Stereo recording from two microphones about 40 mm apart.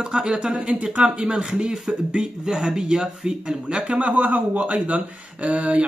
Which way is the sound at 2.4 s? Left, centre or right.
Centre.